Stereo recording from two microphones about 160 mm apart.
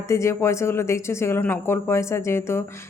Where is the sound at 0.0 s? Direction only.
20° left (ahead or behind).